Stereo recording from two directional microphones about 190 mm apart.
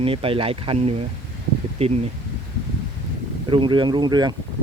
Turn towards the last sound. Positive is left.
turn(degrees=-20)  # may be behind; listen again after turning